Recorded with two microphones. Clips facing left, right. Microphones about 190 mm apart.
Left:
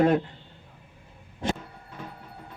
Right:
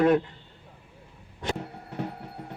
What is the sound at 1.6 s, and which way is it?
Music, 65° right (ahead or behind).